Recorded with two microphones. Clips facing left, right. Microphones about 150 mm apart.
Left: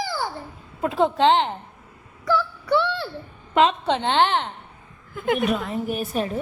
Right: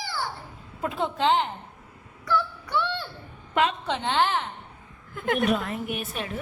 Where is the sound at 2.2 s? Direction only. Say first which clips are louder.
Left 5 dB; 90° left.